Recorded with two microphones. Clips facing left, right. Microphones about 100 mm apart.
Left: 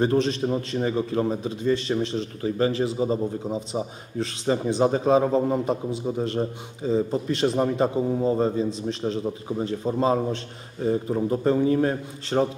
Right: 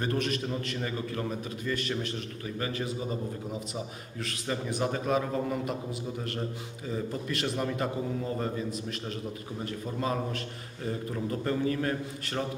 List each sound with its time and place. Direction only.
0.0 s a man's voice: 25° left (ahead or behind)